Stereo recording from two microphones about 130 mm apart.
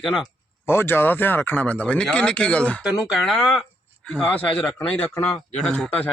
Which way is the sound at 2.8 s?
5° right (ahead or behind).